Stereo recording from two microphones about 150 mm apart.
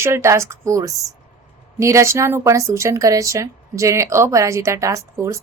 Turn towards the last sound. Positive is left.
turn(degrees=-20)  # may be behind; listen again after turning